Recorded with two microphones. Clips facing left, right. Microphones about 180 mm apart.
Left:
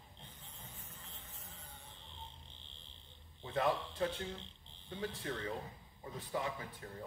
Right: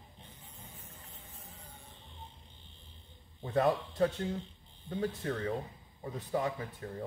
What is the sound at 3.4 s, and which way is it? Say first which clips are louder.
A man's voice: right 6 dB; 40° right (ahead or behind).